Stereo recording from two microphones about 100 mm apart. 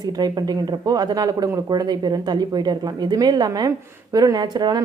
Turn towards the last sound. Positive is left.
turn(degrees=-45)  # may be behind; listen again after turning